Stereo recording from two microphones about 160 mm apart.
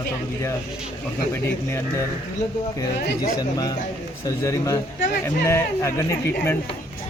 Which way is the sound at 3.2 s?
25° left (ahead or behind).